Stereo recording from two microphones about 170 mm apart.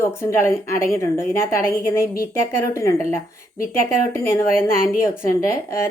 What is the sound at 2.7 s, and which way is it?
A woman's voice, 20° left (ahead or behind).